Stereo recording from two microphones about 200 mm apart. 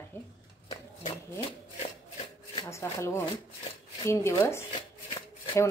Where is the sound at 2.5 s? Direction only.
20° left (ahead or behind).